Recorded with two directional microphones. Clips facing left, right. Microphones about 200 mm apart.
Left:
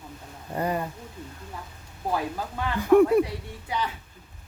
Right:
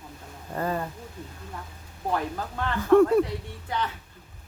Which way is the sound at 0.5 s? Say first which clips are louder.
Left 1 dB; 15° left (ahead or behind).